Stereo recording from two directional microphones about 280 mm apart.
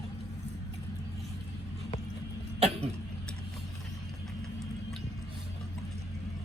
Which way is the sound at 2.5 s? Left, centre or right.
Right.